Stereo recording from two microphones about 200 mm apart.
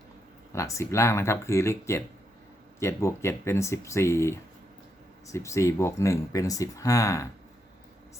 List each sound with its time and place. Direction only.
0.5 s speech: 15° left (ahead or behind)